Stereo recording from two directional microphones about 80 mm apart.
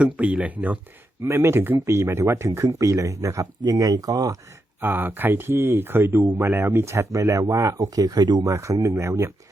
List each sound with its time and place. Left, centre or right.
0.0 s speech: centre
1.2 s speech: right
3.6 s speech: right
4.8 s speech: right
8.4 s speech: right